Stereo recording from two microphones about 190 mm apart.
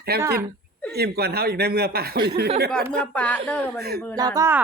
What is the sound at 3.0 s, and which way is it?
Speech, 5° left (ahead or behind).